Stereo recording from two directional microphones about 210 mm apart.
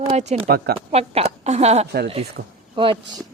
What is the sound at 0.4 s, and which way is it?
Speech, 45° right (ahead or behind).